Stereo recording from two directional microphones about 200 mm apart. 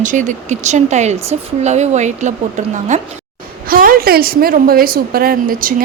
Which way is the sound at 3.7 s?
45° right (ahead or behind).